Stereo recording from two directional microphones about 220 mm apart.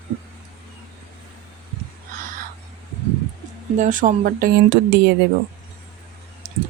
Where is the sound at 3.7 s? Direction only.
35° right (ahead or behind).